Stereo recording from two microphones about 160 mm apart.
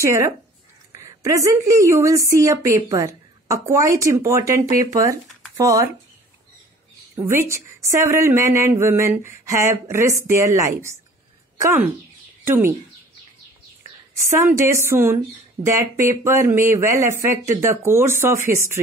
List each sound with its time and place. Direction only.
0.0 s a woman's voice: 20° right (ahead or behind)
7.2 s a woman's voice: 15° right (ahead or behind)
14.3 s a woman's voice: 20° right (ahead or behind)